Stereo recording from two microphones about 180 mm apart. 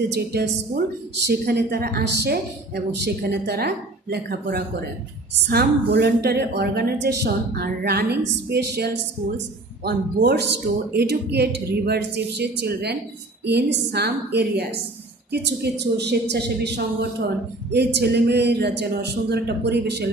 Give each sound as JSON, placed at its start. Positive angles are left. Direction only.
{"t": 0.1, "sound": "a woman's voice", "side_deg": -65}